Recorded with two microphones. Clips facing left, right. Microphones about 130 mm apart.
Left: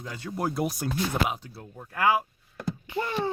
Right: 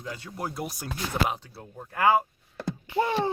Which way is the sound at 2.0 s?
25° right (ahead or behind).